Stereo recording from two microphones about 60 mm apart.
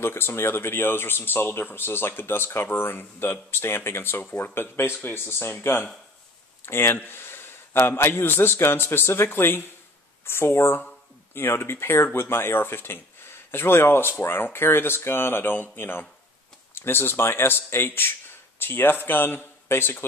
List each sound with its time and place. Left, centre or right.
0.0 s speech: left